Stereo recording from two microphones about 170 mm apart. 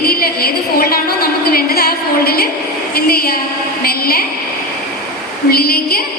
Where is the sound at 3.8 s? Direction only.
65° left (ahead or behind).